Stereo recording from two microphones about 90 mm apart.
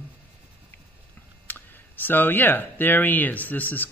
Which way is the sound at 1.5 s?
20° left (ahead or behind).